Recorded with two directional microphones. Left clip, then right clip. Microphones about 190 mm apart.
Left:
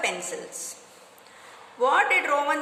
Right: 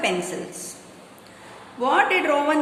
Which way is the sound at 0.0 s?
25° left (ahead or behind).